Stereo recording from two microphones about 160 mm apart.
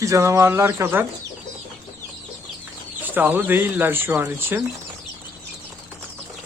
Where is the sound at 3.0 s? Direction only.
10° right (ahead or behind).